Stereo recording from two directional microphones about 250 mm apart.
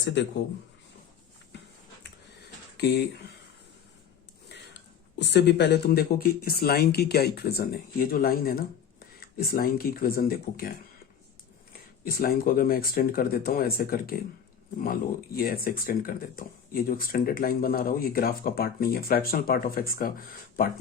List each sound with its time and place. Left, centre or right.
0.0 s speech: left
2.7 s speech: left
4.4 s a sound: left
5.2 s speech: left
12.0 s speech: left
15.4 s speech: left